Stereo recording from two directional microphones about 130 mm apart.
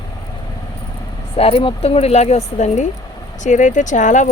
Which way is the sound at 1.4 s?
50° left (ahead or behind).